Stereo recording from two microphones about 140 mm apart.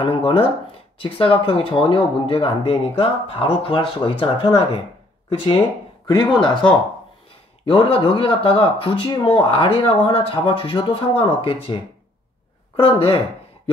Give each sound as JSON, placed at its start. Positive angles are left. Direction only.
{"t": 0.0, "sound": "speech", "side_deg": 40}
{"t": 6.0, "sound": "speech", "side_deg": 35}
{"t": 7.6, "sound": "speech", "side_deg": 40}